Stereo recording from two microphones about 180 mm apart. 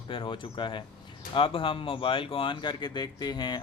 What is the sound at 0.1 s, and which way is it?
Speech, 30° left (ahead or behind).